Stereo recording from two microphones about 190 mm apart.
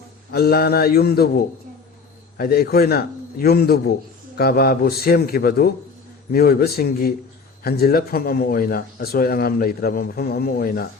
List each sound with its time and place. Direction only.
0.3 s a man's voice: 55° left (ahead or behind)